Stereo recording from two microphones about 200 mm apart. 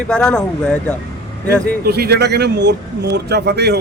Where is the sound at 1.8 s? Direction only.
55° right (ahead or behind).